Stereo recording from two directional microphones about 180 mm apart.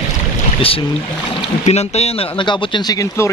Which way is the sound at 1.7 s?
35° left (ahead or behind).